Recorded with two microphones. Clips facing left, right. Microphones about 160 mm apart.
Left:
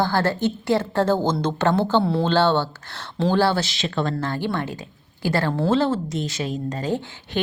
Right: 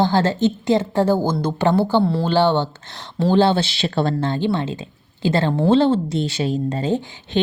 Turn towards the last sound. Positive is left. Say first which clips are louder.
# right 4 dB
turn(degrees=-25)  # may be behind; listen again after turning